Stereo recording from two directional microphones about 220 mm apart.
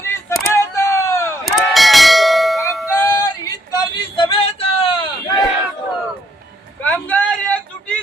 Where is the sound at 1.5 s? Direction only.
Centre (ahead or behind).